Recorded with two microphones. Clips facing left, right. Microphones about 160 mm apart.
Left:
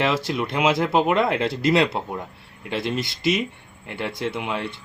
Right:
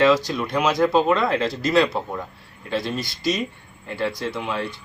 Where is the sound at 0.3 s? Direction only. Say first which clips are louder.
Left 1 dB; 25° left (ahead or behind).